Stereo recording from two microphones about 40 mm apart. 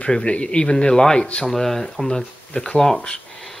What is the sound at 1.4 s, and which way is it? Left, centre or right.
Speech, centre.